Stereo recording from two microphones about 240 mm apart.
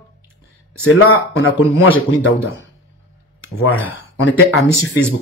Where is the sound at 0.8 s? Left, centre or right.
Left.